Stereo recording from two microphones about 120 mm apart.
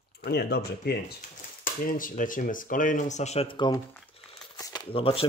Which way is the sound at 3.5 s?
40° left (ahead or behind).